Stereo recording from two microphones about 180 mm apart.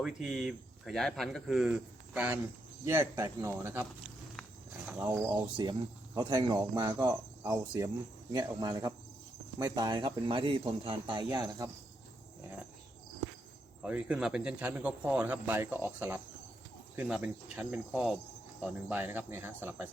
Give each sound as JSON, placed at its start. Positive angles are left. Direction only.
{"t": 0.0, "sound": "speech", "side_deg": 0}
{"t": 4.9, "sound": "speech", "side_deg": -10}
{"t": 6.1, "sound": "speech", "side_deg": -25}
{"t": 13.8, "sound": "speech", "side_deg": -5}